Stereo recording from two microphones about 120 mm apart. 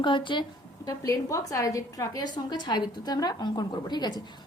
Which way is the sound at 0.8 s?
30° left (ahead or behind).